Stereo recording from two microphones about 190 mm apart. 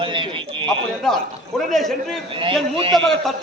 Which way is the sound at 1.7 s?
Centre (ahead or behind).